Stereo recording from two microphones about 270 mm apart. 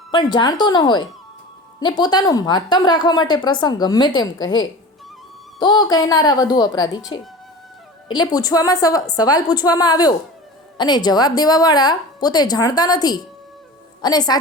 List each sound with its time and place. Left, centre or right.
0.1 s a woman's voice: centre
8.1 s a woman's voice: centre